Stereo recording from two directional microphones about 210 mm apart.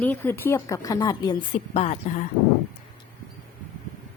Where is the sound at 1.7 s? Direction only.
30° left (ahead or behind).